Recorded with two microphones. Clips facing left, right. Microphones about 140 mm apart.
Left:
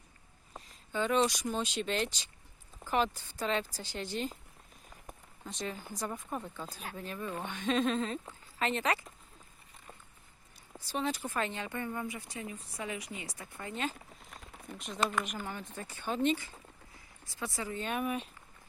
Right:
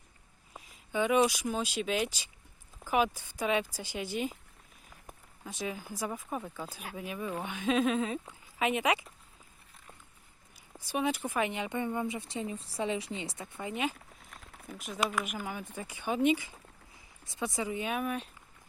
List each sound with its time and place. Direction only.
0.5 s speech: 10° right (ahead or behind)
10.8 s speech: 10° right (ahead or behind)
14.3 s speech: centre (ahead or behind)
17.9 s speech: centre (ahead or behind)